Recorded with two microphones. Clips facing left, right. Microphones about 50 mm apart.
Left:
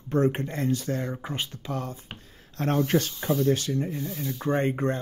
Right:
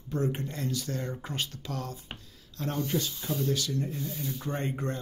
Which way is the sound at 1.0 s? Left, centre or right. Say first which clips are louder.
Left 3 dB; left.